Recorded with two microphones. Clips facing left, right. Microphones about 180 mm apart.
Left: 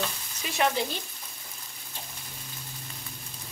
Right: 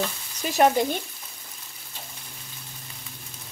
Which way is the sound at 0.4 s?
45° right (ahead or behind).